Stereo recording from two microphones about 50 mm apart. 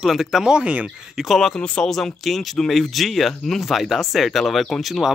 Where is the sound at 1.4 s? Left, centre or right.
Centre.